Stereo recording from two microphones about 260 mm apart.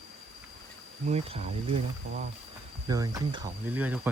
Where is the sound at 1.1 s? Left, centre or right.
Right.